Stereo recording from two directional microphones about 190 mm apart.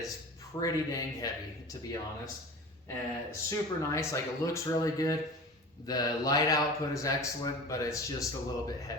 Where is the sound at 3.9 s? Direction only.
15° left (ahead or behind).